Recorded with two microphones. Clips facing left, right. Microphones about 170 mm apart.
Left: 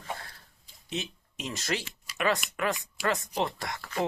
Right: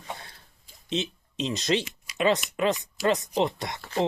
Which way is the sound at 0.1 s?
20° right (ahead or behind).